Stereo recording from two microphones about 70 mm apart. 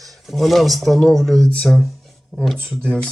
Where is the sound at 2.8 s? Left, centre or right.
Centre.